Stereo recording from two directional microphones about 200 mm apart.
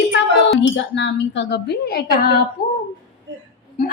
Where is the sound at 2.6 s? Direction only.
45° left (ahead or behind).